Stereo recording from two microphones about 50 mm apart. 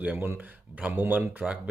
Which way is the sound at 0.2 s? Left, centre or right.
Right.